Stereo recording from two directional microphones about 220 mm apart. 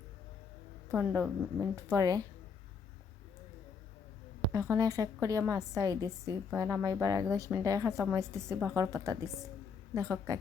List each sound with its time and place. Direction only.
0.9 s a woman's voice: 10° right (ahead or behind)
4.5 s a woman's voice: 15° right (ahead or behind)